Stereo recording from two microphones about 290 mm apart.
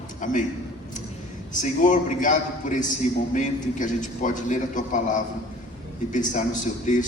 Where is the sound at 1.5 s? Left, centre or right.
Left.